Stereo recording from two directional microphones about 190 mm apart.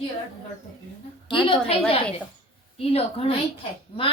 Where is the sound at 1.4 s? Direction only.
30° left (ahead or behind).